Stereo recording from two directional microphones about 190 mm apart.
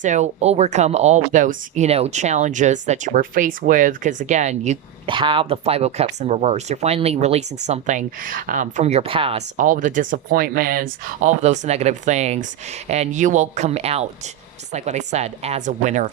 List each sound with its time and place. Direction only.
0.0 s speech: 40° right (ahead or behind)
9.6 s speech: 45° right (ahead or behind)